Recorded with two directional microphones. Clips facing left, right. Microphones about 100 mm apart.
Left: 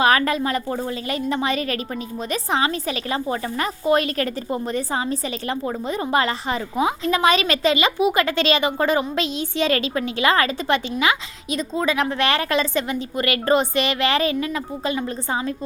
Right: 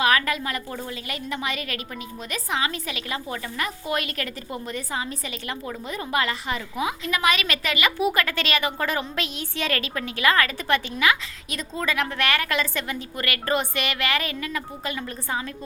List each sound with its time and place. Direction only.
0.0 s a woman's voice: 35° left (ahead or behind)